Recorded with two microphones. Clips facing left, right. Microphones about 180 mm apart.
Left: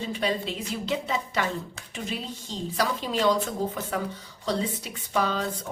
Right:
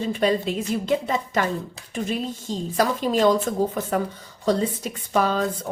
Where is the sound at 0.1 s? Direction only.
45° right (ahead or behind).